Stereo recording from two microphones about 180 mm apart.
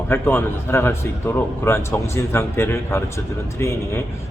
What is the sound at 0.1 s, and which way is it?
A man's voice, 10° left (ahead or behind).